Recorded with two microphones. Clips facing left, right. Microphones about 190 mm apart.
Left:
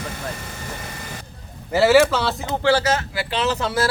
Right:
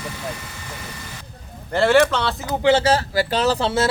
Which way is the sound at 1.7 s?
5° left (ahead or behind).